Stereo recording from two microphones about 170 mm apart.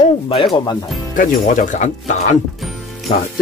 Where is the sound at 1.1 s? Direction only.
50° left (ahead or behind).